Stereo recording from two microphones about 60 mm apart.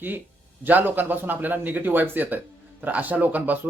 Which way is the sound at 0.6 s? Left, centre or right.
Right.